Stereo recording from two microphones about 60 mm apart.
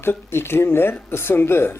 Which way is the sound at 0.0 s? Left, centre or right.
Left.